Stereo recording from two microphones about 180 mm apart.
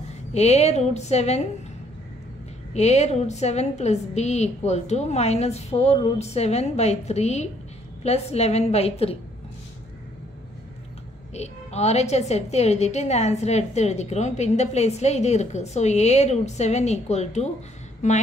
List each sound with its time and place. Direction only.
0.3 s a woman's voice: 35° left (ahead or behind)
2.7 s a woman's voice: 40° left (ahead or behind)
11.3 s a woman's voice: 35° left (ahead or behind)